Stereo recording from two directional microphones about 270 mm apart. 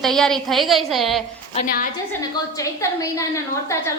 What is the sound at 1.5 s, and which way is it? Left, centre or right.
Speech, left.